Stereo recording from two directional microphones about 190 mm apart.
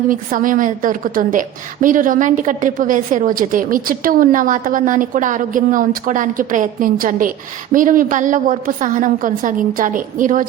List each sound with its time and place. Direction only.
0.1 s a woman's voice: 45° right (ahead or behind)